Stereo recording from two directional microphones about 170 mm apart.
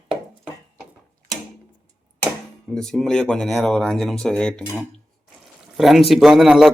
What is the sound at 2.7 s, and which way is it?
Speech, centre (ahead or behind).